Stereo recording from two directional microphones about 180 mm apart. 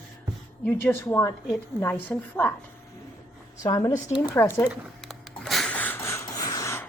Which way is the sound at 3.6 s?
20° left (ahead or behind).